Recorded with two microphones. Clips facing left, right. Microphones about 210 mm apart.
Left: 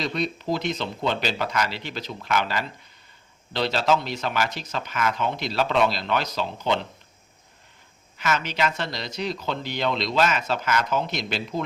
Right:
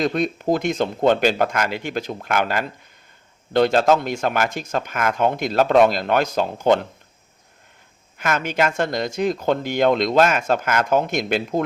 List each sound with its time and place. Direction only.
0.0 s speech: 50° right (ahead or behind)
8.2 s speech: 50° right (ahead or behind)